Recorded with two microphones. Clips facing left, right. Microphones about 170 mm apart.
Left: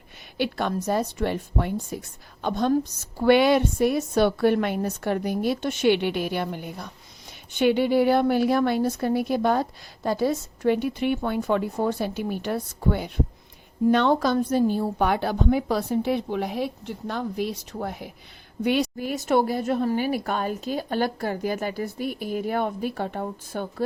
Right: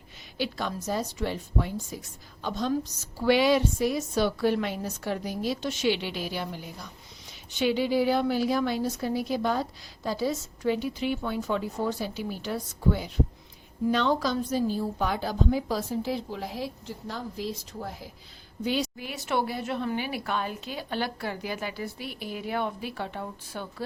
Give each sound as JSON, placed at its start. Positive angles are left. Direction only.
{"t": 0.3, "sound": "a woman's voice", "side_deg": 60}